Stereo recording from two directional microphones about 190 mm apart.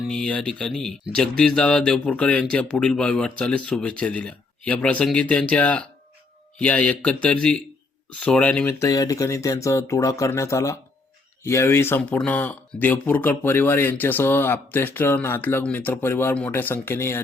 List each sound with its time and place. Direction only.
0.0 s speech: 5° left (ahead or behind)